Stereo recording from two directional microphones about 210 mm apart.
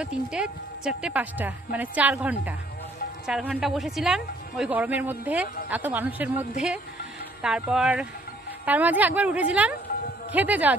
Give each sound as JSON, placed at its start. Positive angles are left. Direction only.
{"t": 0.0, "sound": "a woman's voice", "side_deg": -5}